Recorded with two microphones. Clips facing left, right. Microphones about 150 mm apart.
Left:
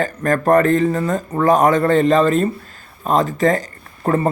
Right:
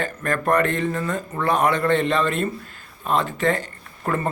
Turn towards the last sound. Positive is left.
turn(degrees=35)  # may be behind; listen again after turning